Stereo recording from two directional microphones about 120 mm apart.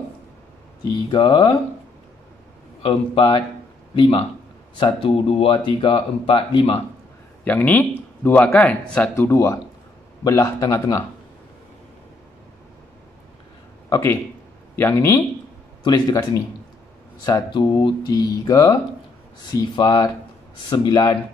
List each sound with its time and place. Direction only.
1.1 s speech: 45° left (ahead or behind)
2.8 s speech: 45° left (ahead or behind)
7.4 s speech: 15° left (ahead or behind)
9.1 s speech: 20° left (ahead or behind)
13.8 s speech: 25° left (ahead or behind)
15.8 s speech: 30° left (ahead or behind)